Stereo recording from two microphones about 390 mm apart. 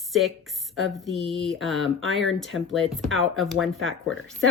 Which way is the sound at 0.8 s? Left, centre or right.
Centre.